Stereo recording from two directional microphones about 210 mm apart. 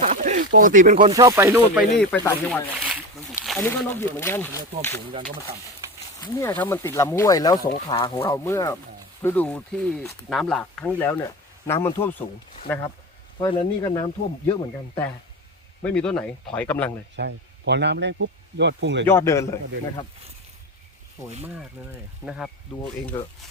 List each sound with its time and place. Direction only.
0.0 s a sound: 35° right (ahead or behind)
0.9 s speech: 20° right (ahead or behind); by 2.0 s 5° right (ahead or behind)
2.0 s speech: 10° left (ahead or behind)
2.7 s a sound: centre (ahead or behind)
3.4 s snake: centre (ahead or behind)
3.7 s speech: 10° left (ahead or behind)
6.1 s speech: 15° left (ahead or behind)
13.4 s speech: 20° left (ahead or behind)
15.8 s speech: 5° left (ahead or behind)
17.2 s speech: 55° right (ahead or behind)
19.0 s speech: 15° left (ahead or behind)
21.8 s speech: 10° right (ahead or behind)
22.3 s speech: centre (ahead or behind)